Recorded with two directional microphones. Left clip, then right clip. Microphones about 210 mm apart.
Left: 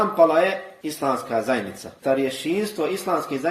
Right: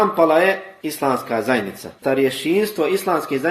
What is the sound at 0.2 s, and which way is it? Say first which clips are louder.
Speech: even; 25° right (ahead or behind).